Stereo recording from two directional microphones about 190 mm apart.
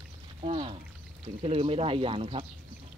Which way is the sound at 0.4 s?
30° right (ahead or behind).